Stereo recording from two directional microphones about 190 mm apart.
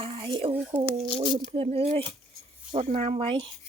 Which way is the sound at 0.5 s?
10° right (ahead or behind).